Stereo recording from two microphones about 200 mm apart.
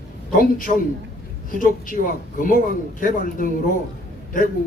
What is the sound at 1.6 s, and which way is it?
A man's voice, 45° left (ahead or behind).